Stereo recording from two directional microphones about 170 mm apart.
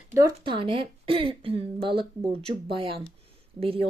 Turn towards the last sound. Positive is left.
turn(degrees=-35)  # may be behind; listen again after turning